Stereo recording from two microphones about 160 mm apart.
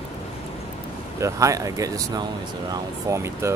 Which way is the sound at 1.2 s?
20° right (ahead or behind).